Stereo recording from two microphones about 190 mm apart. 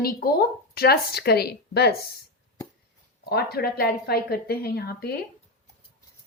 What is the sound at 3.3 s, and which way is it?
Speech, 55° left (ahead or behind).